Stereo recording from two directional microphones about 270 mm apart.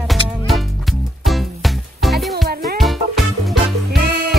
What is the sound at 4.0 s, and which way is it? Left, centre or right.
Music, right.